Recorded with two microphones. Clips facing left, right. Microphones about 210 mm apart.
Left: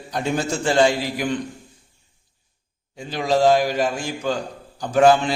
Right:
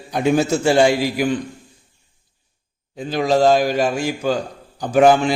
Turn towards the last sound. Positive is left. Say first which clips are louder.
# right 2 dB
turn(degrees=-15)  # may be behind; listen again after turning